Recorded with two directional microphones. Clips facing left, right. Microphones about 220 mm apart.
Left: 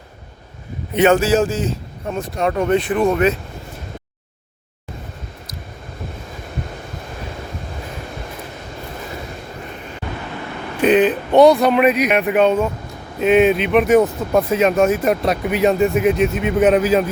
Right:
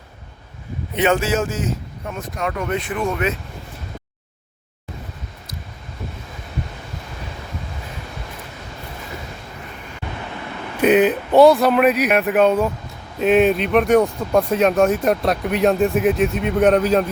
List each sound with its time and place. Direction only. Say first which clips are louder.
0.9 s speech: left 5 dB; 45° left (ahead or behind)
10.8 s speech: even; 10° right (ahead or behind)